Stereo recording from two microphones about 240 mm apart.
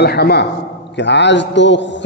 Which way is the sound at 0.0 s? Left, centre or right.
Left.